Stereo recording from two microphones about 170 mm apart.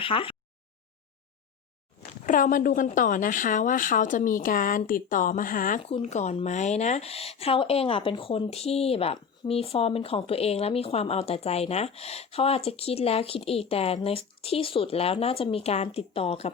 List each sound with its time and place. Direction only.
0.0 s a sound: 30° left (ahead or behind)
2.2 s speech: 50° left (ahead or behind)
5.8 s speech: 35° left (ahead or behind)